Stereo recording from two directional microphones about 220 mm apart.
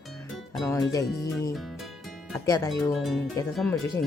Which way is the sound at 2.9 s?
Centre (ahead or behind).